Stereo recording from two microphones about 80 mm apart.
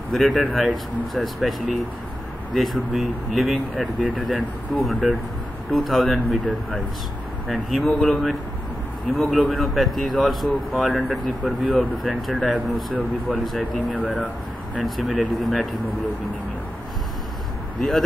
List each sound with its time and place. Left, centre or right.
0.1 s speech: centre
13.7 s speech: centre
14.8 s speech: centre